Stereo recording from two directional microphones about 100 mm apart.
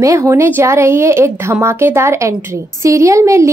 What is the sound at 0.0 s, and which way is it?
A woman's voice, 30° right (ahead or behind).